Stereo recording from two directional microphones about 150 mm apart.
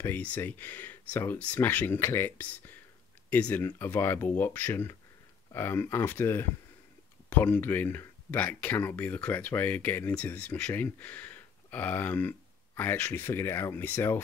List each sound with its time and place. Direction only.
0.0 s speech: 10° left (ahead or behind)